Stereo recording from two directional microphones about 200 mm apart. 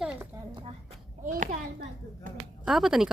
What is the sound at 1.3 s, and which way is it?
Speech, 40° right (ahead or behind).